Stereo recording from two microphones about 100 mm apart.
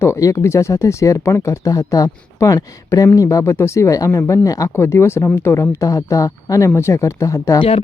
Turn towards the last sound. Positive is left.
turn(degrees=35)  # may be behind; listen again after turning